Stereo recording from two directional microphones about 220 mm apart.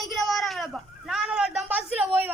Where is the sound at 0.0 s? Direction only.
Centre (ahead or behind).